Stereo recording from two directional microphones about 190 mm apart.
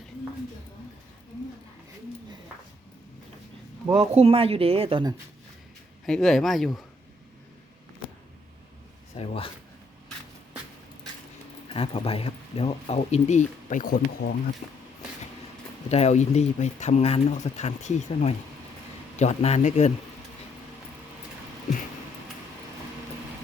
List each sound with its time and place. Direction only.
3.9 s speech: 35° right (ahead or behind)
6.1 s speech: centre (ahead or behind)
9.1 s a sound: 30° left (ahead or behind)
11.7 s speech: 30° left (ahead or behind); by 14.8 s 45° left (ahead or behind)
15.9 s speech: 35° left (ahead or behind)